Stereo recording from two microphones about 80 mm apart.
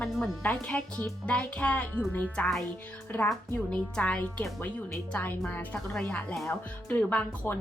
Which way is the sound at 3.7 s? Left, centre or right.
Centre.